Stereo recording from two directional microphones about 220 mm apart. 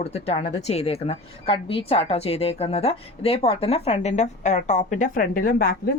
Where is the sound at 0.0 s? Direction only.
30° left (ahead or behind).